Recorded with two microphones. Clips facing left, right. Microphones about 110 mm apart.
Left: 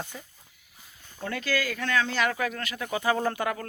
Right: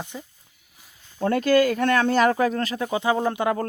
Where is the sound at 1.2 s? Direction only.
45° right (ahead or behind); by 3.6 s 20° right (ahead or behind).